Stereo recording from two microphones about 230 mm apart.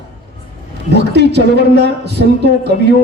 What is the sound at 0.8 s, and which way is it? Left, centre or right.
A man's voice, right.